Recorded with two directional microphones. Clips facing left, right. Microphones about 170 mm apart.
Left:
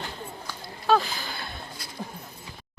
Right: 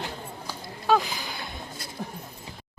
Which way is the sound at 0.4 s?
10° right (ahead or behind).